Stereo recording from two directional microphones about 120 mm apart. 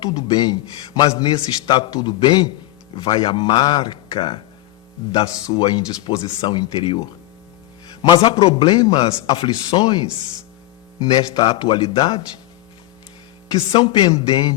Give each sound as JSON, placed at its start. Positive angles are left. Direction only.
{"t": 0.0, "sound": "speech", "side_deg": 35}
{"t": 8.2, "sound": "speech", "side_deg": 45}
{"t": 11.0, "sound": "speech", "side_deg": 40}
{"t": 13.5, "sound": "speech", "side_deg": 40}